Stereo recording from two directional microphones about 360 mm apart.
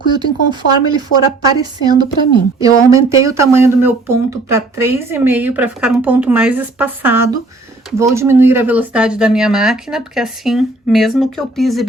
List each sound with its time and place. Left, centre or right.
0.3 s speech: left
0.9 s speech: centre